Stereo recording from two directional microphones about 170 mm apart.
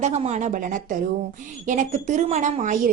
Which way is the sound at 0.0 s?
40° right (ahead or behind).